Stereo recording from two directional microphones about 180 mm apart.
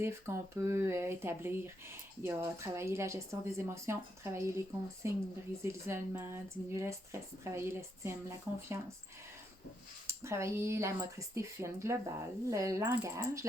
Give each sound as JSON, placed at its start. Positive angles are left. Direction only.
{"t": 0.0, "sound": "a woman's voice", "side_deg": -15}
{"t": 10.2, "sound": "a woman's voice", "side_deg": -15}